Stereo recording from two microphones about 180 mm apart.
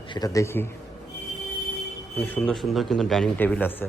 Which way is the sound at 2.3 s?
5° left (ahead or behind).